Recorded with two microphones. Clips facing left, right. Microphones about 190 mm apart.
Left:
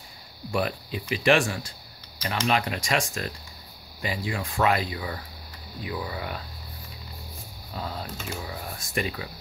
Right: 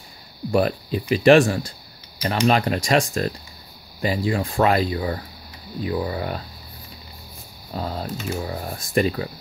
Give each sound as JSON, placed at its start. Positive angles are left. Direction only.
{"t": 0.5, "sound": "speech", "side_deg": -40}
{"t": 7.7, "sound": "speech", "side_deg": -40}